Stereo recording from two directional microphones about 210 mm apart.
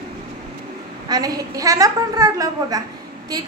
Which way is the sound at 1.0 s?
20° right (ahead or behind).